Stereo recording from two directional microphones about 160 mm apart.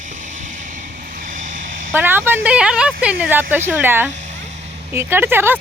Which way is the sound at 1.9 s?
10° right (ahead or behind).